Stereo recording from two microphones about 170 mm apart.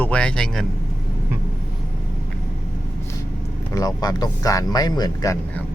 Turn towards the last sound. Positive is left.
turn(degrees=25)  # may be behind; listen again after turning